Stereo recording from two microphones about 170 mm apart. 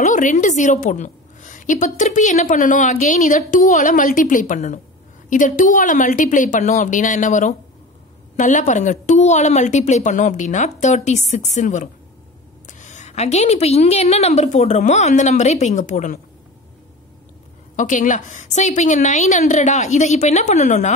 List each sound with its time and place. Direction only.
0.0 s a woman's voice: 50° left (ahead or behind)
17.7 s a woman's voice: 50° left (ahead or behind)